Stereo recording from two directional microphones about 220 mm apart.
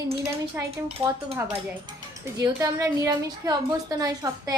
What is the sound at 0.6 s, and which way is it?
Speech, 15° right (ahead or behind).